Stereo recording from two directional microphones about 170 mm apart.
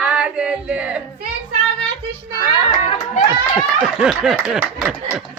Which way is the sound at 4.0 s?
5° right (ahead or behind).